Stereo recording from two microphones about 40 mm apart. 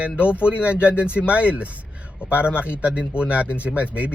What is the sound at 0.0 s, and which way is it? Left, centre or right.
Speech, right.